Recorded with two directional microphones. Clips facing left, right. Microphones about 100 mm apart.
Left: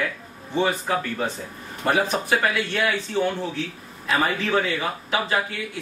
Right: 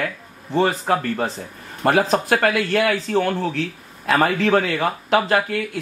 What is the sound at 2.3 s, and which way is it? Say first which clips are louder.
Speech: right 4 dB; 70° right (ahead or behind).